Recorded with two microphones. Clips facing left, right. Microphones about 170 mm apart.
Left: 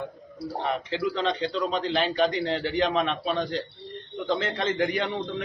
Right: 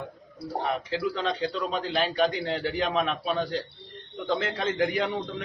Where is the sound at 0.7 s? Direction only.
Centre (ahead or behind).